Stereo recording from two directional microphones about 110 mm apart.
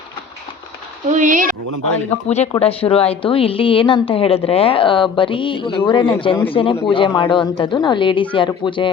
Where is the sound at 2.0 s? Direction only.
80° left.